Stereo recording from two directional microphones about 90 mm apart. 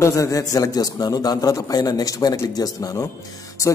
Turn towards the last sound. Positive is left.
turn(degrees=35)  # may be behind; listen again after turning